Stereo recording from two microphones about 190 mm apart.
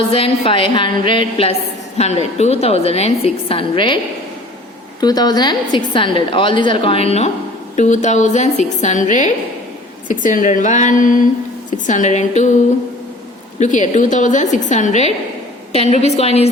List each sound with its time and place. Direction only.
0.1 s a woman's voice: 30° left (ahead or behind)
4.9 s a woman's voice: 20° left (ahead or behind); by 12.5 s 40° left (ahead or behind)
13.6 s a woman's voice: 40° left (ahead or behind)